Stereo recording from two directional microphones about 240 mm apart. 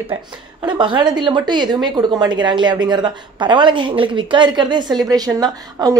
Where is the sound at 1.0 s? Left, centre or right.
Centre.